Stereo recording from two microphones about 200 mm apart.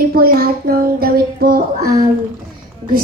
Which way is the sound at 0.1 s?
50° right (ahead or behind).